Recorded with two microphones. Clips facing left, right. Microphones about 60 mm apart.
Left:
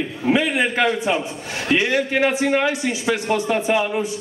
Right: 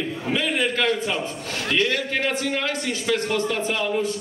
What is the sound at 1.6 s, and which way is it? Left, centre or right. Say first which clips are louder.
A man's voice: left 4 dB; centre.